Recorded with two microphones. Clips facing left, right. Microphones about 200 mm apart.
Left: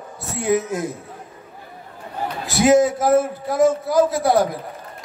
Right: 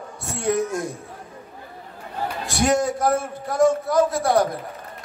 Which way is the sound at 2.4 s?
5° left (ahead or behind).